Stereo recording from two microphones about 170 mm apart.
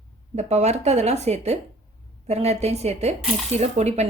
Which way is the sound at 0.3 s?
40° right (ahead or behind).